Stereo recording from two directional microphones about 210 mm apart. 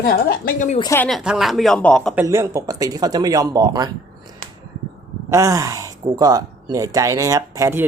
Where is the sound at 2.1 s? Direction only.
15° right (ahead or behind).